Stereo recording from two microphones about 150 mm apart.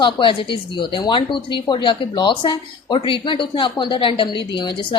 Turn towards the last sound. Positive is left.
turn(degrees=30)  # may be behind; listen again after turning